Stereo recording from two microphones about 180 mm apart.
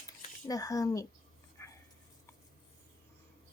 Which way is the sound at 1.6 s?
15° left (ahead or behind).